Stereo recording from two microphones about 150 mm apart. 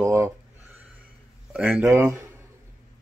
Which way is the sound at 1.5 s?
5° right (ahead or behind).